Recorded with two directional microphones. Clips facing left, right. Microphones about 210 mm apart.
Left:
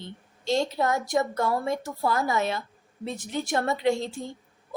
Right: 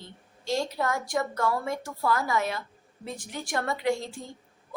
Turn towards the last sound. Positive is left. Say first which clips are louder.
# left 3 dB
turn(degrees=25)  # may be behind; listen again after turning